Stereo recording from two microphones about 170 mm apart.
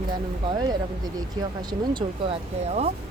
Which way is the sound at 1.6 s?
25° right (ahead or behind).